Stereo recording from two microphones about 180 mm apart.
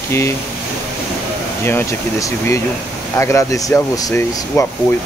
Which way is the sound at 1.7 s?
15° left (ahead or behind).